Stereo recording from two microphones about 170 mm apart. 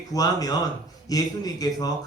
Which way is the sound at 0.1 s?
20° left (ahead or behind).